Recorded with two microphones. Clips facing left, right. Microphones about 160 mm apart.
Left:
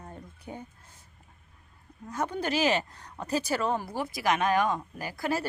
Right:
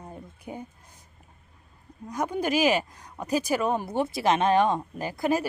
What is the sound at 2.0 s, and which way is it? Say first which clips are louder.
Speech: right 3 dB; 15° right (ahead or behind).